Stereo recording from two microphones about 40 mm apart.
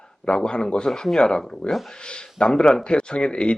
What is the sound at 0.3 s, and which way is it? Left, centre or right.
Speech, left.